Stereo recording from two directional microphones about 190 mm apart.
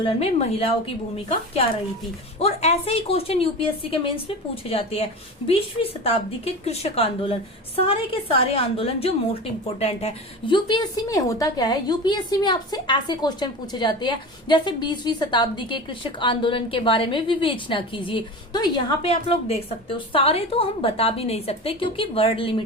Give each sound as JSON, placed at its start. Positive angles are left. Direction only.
{"t": 0.0, "sound": "a woman's voice", "side_deg": 30}
{"t": 2.4, "sound": "speech", "side_deg": 30}
{"t": 4.7, "sound": "a woman's voice", "side_deg": 30}